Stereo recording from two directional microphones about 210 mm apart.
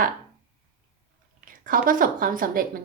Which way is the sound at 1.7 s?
40° right (ahead or behind).